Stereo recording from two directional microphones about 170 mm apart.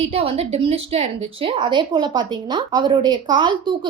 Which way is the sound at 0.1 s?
35° right (ahead or behind).